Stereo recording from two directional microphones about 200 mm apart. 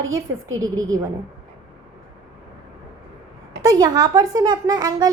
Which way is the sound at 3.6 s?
20° right (ahead or behind).